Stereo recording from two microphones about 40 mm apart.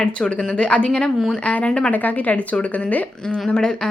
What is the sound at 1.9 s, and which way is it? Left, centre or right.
A woman's voice, left.